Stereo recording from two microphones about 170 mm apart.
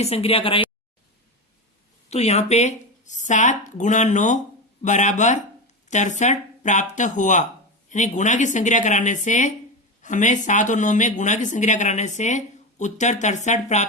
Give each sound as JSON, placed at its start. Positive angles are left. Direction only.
{"t": 0.0, "sound": "speech", "side_deg": 35}
{"t": 2.0, "sound": "speech", "side_deg": 40}